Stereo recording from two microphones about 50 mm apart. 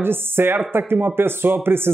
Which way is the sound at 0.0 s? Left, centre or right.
Right.